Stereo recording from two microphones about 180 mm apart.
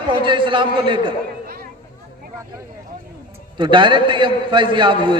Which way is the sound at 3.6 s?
25° right (ahead or behind).